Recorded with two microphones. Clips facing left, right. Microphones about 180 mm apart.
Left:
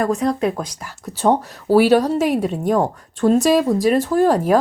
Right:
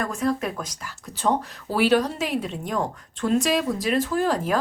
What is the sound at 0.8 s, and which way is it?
A woman's voice, 45° left (ahead or behind).